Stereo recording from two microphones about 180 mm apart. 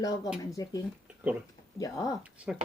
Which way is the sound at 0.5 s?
20° left (ahead or behind).